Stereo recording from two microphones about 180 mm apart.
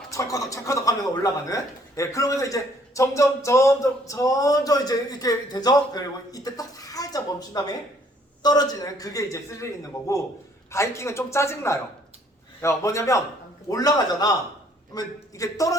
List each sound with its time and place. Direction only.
0.1 s a man's voice: 20° left (ahead or behind)